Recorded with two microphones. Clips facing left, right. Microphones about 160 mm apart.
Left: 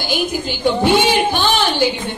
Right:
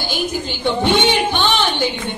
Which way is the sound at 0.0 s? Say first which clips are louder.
Left 2 dB; 10° left (ahead or behind).